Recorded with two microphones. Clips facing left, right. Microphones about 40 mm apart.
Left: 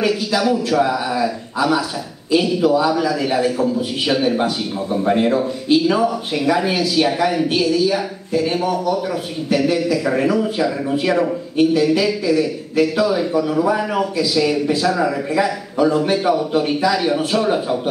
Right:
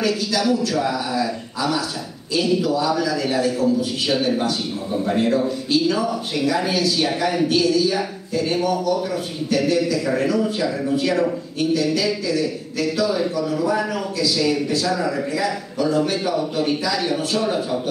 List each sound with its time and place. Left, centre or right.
0.0 s a man's voice: left
7.4 s a man's voice: left